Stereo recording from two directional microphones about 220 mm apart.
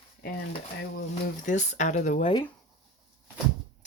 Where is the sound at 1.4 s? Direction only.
35° left (ahead or behind).